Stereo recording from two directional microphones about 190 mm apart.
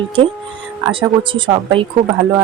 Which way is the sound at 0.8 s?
25° right (ahead or behind).